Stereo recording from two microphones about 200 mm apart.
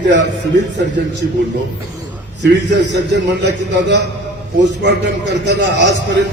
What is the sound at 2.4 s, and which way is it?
A man's voice, 60° right (ahead or behind).